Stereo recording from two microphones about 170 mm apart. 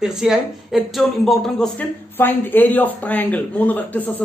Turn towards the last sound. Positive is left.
turn(degrees=10)  # may be behind; listen again after turning